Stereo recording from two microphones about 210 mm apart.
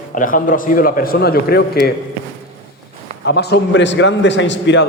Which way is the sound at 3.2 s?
50° left (ahead or behind).